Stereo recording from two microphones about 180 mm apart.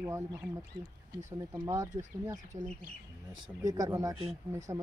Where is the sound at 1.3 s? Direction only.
20° right (ahead or behind).